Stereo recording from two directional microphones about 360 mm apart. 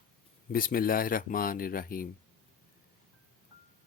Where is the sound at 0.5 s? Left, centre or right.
Left.